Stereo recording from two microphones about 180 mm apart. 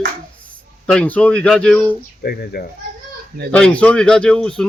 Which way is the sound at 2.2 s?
60° left (ahead or behind).